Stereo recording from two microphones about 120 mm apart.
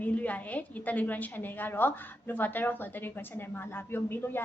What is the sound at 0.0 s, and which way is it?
A woman's voice, 10° left (ahead or behind).